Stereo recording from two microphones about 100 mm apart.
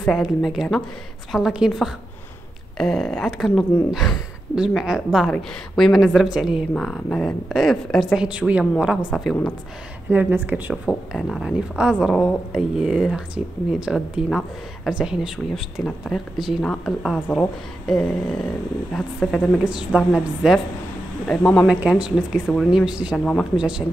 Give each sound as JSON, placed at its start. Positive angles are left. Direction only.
{"t": 0.1, "sound": "a woman's voice", "side_deg": 0}
{"t": 6.7, "sound": "a woman's voice", "side_deg": 5}
{"t": 10.0, "sound": "speech", "side_deg": -20}
{"t": 10.9, "sound": "a woman's voice", "side_deg": 5}
{"t": 19.6, "sound": "speech", "side_deg": -10}
{"t": 21.6, "sound": "speech", "side_deg": -10}
{"t": 22.5, "sound": "a woman's voice", "side_deg": 0}
{"t": 23.1, "sound": "a woman's voice", "side_deg": 0}